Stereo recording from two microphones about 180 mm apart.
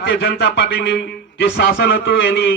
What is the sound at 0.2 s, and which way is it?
Speech, 75° left (ahead or behind).